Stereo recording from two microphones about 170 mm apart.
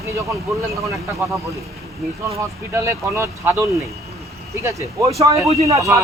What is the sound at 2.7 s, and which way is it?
Speech, 15° right (ahead or behind).